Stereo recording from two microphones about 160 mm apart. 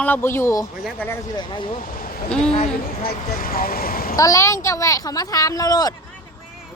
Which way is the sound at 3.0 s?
65° left (ahead or behind).